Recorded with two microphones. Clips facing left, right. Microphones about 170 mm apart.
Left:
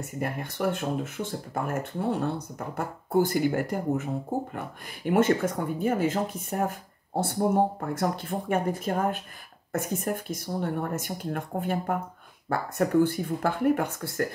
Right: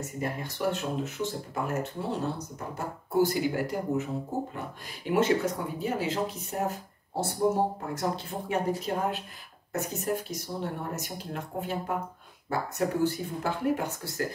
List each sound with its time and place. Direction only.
0.0 s speech: 60° left (ahead or behind)
5.1 s speech: 50° left (ahead or behind)